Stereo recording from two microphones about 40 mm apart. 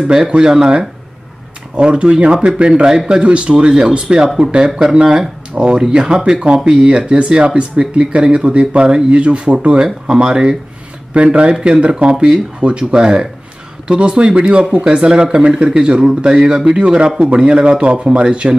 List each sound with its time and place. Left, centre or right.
0.1 s speech: centre
11.1 s speech: right